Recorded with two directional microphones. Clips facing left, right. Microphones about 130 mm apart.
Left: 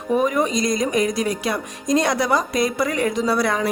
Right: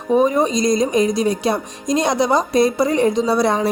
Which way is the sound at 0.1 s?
25° right (ahead or behind).